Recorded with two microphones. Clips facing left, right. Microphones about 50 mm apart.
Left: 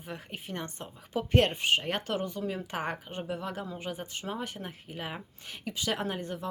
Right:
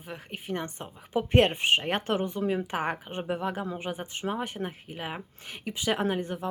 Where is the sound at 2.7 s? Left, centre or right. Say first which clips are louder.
Right 4 dB; centre.